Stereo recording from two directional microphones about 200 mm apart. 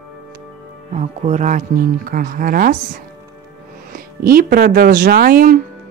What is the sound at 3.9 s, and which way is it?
Speech, 45° right (ahead or behind).